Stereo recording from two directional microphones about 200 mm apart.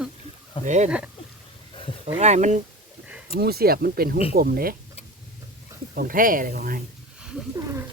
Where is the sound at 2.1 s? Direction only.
35° right (ahead or behind).